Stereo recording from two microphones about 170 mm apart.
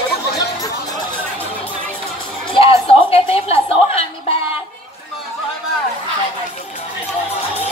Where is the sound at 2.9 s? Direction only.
35° left (ahead or behind).